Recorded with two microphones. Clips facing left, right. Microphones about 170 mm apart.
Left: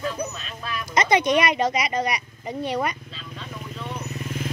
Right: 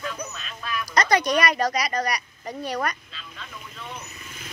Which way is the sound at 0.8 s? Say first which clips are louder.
Left 2 dB; 25° left (ahead or behind).